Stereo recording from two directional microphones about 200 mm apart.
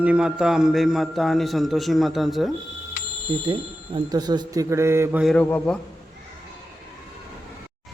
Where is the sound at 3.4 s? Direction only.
20° right (ahead or behind).